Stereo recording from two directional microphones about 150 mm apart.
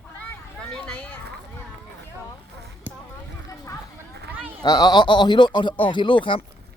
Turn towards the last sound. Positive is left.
turn(degrees=35)  # may be behind; listen again after turning